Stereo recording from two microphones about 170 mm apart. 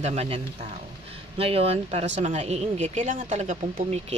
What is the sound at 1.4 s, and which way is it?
Speech, 35° right (ahead or behind).